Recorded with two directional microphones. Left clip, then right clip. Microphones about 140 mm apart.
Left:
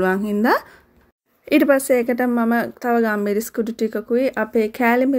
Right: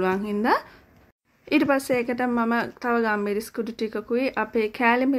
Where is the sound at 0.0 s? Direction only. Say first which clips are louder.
Left 5 dB; 40° left (ahead or behind).